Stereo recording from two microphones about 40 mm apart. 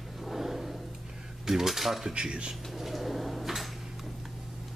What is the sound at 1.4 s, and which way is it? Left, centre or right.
Cutlery, centre.